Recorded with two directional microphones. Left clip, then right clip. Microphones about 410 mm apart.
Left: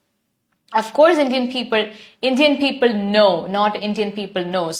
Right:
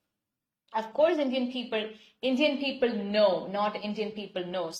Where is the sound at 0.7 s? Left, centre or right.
Left.